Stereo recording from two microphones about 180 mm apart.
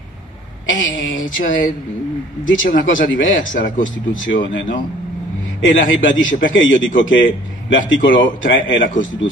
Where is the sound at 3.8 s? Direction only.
90° left.